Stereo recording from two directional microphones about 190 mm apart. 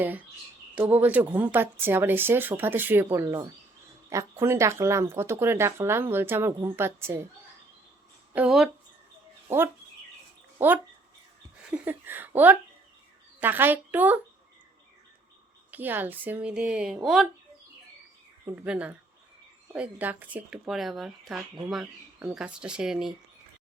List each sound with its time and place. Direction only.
0.8 s speech: 10° right (ahead or behind)
8.3 s speech: 5° right (ahead or behind)
11.7 s speech: 10° right (ahead or behind)
15.7 s speech: 10° right (ahead or behind)
18.4 s speech: 5° right (ahead or behind)